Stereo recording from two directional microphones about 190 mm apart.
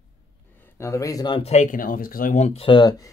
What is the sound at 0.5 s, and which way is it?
Speech, 15° left (ahead or behind).